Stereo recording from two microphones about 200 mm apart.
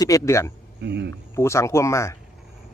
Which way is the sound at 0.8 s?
60° right (ahead or behind).